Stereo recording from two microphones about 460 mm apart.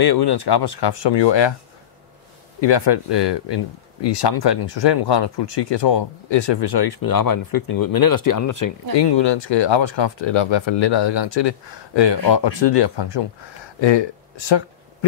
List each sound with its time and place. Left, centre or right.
0.0 s speech: left
2.6 s speech: left
9.0 s speech: left
13.7 s a sound: left